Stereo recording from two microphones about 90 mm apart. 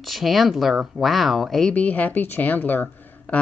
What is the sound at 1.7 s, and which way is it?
A woman's voice, 15° left (ahead or behind).